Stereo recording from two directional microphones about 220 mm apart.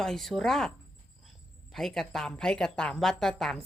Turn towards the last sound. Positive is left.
turn(degrees=0)  # may be behind; listen again after turning